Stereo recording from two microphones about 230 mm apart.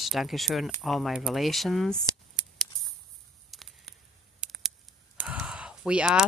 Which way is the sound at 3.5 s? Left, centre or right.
Centre.